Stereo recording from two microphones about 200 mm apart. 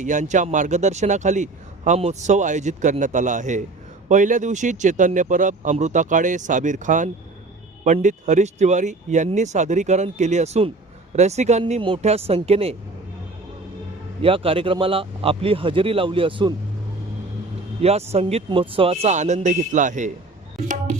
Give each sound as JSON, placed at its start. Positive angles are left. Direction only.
{"t": 0.0, "sound": "speech", "side_deg": -40}
{"t": 14.2, "sound": "speech", "side_deg": -25}
{"t": 17.8, "sound": "speech", "side_deg": -30}